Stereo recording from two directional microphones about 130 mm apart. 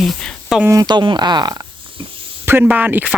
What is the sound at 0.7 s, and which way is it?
Speech, 30° right (ahead or behind).